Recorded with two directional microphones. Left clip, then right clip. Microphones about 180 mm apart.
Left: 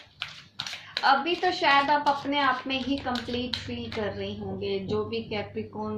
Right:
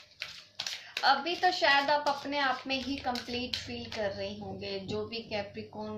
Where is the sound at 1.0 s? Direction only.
40° right (ahead or behind).